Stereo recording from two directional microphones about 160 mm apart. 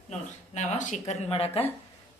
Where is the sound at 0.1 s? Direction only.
45° left (ahead or behind).